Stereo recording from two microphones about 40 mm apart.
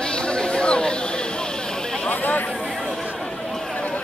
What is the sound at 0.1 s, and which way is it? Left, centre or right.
Chatter, left.